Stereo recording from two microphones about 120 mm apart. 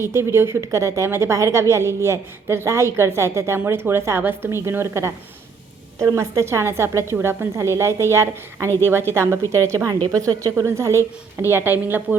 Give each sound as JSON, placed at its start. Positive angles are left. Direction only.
{"t": 0.0, "sound": "a woman's voice", "side_deg": -20}